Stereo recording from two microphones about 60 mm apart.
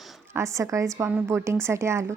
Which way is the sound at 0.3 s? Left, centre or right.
Right.